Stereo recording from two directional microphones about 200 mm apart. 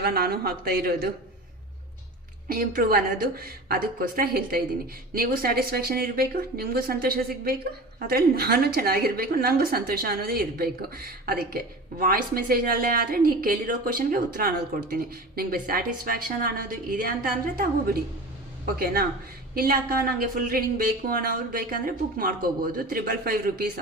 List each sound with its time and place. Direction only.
0.0 s a woman's voice: 50° right (ahead or behind)
2.5 s a woman's voice: 45° right (ahead or behind)